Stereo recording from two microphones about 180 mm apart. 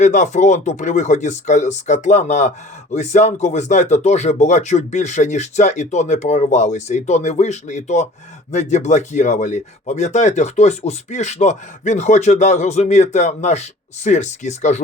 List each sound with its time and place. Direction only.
0.0 s speech: 40° left (ahead or behind)